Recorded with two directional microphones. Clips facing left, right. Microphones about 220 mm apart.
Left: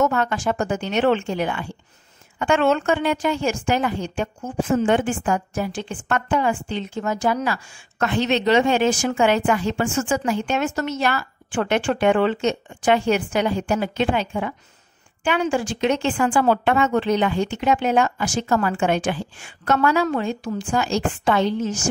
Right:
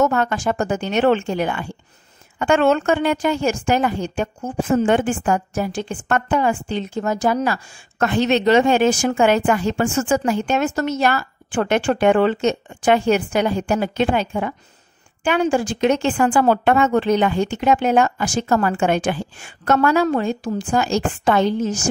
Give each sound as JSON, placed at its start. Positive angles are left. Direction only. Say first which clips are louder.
{"t": 0.0, "sound": "speech", "louder": "right 2 dB", "side_deg": -45}